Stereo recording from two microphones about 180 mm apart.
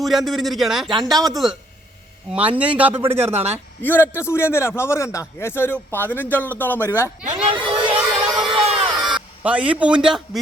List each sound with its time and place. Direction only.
0.0 s speech: centre (ahead or behind)
0.9 s speech: 25° right (ahead or behind)
1.2 s a man's voice: centre (ahead or behind)
3.3 s speech: 35° right (ahead or behind)
3.8 s a man's voice: 10° left (ahead or behind)
7.4 s speech: 25° right (ahead or behind)
8.0 s a sound: 20° right (ahead or behind)
8.4 s crowd: 30° right (ahead or behind)
8.7 s music: 5° right (ahead or behind)
9.4 s a man's voice: 10° right (ahead or behind)